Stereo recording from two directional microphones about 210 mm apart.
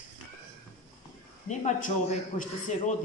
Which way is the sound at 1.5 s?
35° left (ahead or behind).